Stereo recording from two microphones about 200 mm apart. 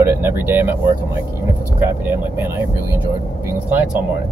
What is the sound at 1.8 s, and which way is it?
Speech, 10° right (ahead or behind).